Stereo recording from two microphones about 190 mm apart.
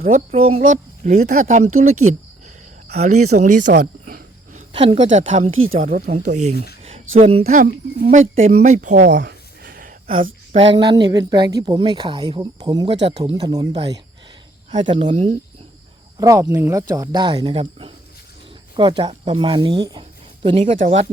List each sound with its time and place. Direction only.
0.0 s speech: 40° right (ahead or behind)
3.7 s cricket: 55° right (ahead or behind)
4.7 s speech: 30° right (ahead or behind)
5.5 s a woman's voice: 90° right
5.8 s speech: 45° right (ahead or behind)
9.0 s speech: 70° right (ahead or behind)
9.6 s a sound: 50° right (ahead or behind)
10.8 s speech: 20° right (ahead or behind)
13.0 s speech: 65° right (ahead or behind)
13.3 s speech: 20° right (ahead or behind)
14.8 s speech: 25° right (ahead or behind)
16.1 s speech: 15° right (ahead or behind); by 21.1 s 35° right (ahead or behind)